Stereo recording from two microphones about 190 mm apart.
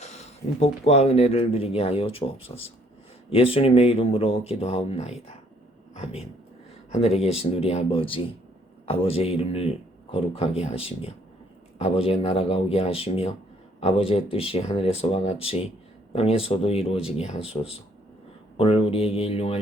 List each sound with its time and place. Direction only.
0.0 s speech: 35° left (ahead or behind)